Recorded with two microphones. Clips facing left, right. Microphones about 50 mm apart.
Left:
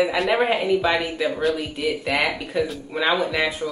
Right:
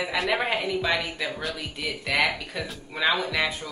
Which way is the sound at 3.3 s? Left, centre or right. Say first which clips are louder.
Left 4 dB; centre.